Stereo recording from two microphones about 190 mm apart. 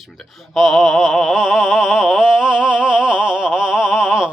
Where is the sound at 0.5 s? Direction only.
Centre (ahead or behind).